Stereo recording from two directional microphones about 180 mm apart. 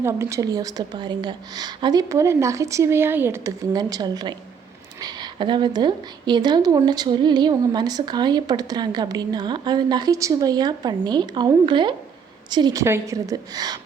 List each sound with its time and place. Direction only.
0.0 s speech: 15° right (ahead or behind)